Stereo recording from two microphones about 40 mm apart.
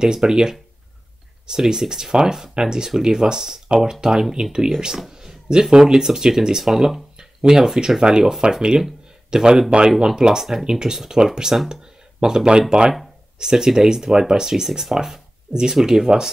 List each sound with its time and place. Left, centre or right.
0.0 s speech: centre